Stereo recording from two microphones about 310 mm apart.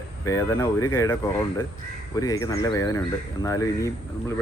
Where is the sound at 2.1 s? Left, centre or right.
Centre.